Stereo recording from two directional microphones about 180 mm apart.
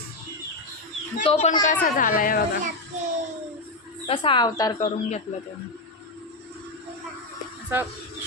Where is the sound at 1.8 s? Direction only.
50° left (ahead or behind).